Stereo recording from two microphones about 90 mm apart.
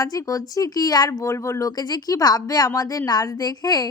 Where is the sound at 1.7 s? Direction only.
50° left (ahead or behind).